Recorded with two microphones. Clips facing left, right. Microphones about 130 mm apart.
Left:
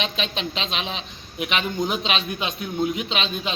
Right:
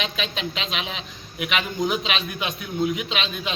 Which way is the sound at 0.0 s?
30° left (ahead or behind).